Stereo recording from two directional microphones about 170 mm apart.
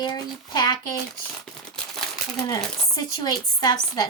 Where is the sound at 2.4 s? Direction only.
20° left (ahead or behind).